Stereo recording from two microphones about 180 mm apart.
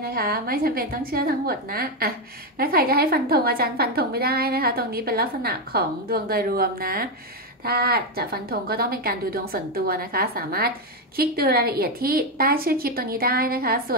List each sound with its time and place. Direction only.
0.0 s a woman's voice: 55° right (ahead or behind)